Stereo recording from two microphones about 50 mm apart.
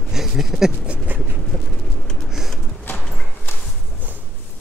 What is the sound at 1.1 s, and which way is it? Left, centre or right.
Vehicle, right.